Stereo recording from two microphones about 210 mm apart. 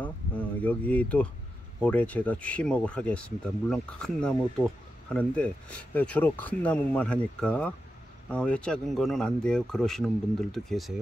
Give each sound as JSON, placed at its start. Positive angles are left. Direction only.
{"t": 0.0, "sound": "speech", "side_deg": 5}